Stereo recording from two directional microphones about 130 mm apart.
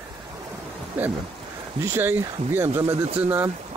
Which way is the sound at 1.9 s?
15° right (ahead or behind).